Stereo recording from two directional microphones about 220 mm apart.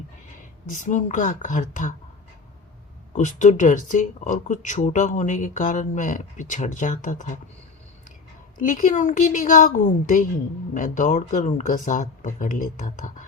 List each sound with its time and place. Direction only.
0.7 s speech: 35° left (ahead or behind)
3.1 s speech: 35° left (ahead or behind)
8.5 s speech: 35° left (ahead or behind)